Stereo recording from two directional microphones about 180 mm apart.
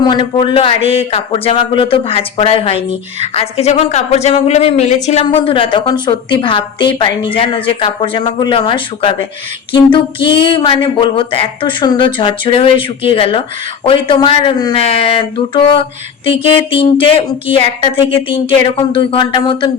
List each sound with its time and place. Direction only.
0.0 s a woman's voice: 25° left (ahead or behind)